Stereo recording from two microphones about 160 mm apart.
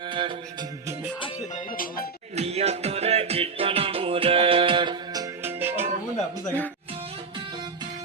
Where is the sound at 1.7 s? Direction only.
60° left (ahead or behind).